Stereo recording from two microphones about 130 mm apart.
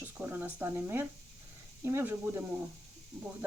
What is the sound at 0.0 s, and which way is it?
Speech, 15° right (ahead or behind).